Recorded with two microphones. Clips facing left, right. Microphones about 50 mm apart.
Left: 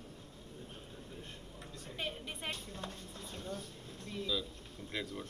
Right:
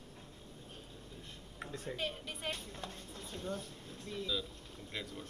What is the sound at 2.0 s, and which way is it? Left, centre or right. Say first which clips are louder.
Speech: left 4 dB; centre.